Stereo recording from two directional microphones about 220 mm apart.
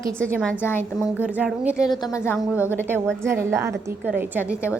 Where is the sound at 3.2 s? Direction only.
10° right (ahead or behind).